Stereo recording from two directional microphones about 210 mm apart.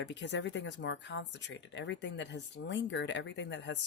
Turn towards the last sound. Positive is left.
turn(degrees=55)  # may be behind; listen again after turning